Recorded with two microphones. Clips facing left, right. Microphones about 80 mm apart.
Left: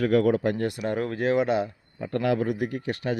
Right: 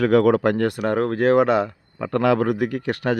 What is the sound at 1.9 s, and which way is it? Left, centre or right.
A man's voice, right.